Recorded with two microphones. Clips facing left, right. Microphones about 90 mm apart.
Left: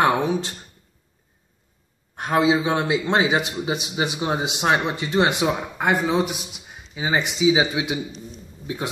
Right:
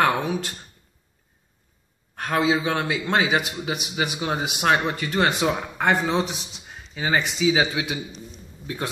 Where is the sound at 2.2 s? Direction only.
20° left (ahead or behind).